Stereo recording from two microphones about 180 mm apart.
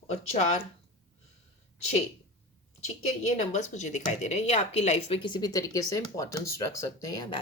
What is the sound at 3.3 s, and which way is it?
A woman's voice, 40° left (ahead or behind).